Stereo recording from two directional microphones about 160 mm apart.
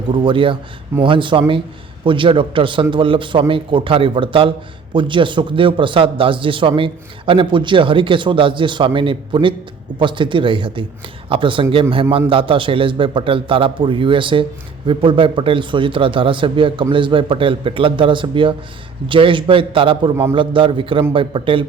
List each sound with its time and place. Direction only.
0.1 s a man's voice: 30° right (ahead or behind)